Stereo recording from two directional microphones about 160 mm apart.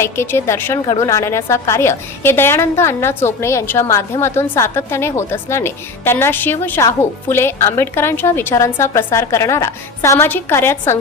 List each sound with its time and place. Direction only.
0.0 s a woman's voice: 15° left (ahead or behind)